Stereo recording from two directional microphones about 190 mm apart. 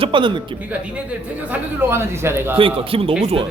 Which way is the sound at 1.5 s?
15° right (ahead or behind).